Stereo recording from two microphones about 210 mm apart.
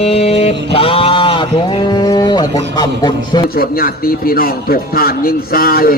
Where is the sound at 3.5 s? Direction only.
45° left (ahead or behind).